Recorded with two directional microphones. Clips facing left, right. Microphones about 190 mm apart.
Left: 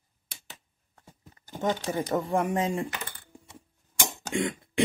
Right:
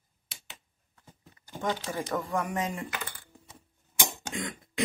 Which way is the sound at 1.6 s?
20° left (ahead or behind).